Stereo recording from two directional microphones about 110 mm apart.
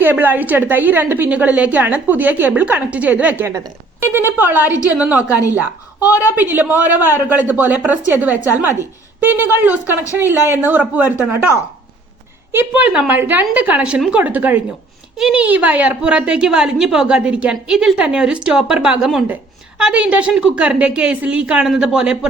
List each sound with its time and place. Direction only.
0.0 s a woman's voice: 15° right (ahead or behind)
12.5 s a woman's voice: 15° right (ahead or behind)